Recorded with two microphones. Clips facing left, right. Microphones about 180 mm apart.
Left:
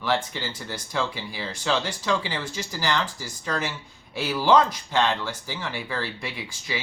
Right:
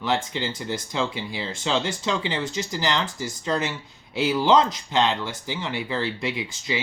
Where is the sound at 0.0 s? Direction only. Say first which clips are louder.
Right 1 dB; 20° right (ahead or behind).